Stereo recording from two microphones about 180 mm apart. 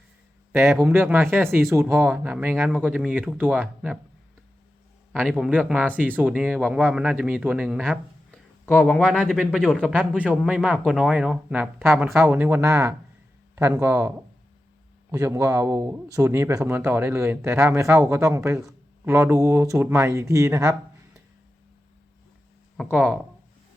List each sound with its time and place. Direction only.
0.5 s speech: 15° right (ahead or behind)
5.1 s speech: 5° right (ahead or behind)
15.1 s speech: 15° right (ahead or behind)
22.8 s speech: 5° right (ahead or behind)